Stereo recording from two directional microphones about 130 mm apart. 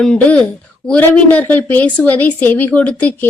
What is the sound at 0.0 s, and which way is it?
Speech, 10° left (ahead or behind).